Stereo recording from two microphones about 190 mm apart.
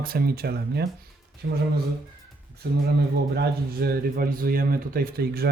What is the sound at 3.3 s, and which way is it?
A man's voice, 55° right (ahead or behind).